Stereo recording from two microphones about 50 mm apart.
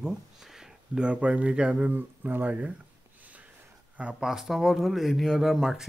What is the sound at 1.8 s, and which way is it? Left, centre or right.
Speech, right.